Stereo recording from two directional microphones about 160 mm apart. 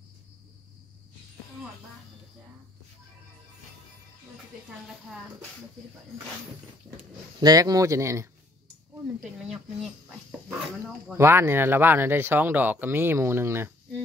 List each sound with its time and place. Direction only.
7.3 s speech: 25° right (ahead or behind)
9.0 s speech: 5° right (ahead or behind)
11.1 s speech: 15° right (ahead or behind)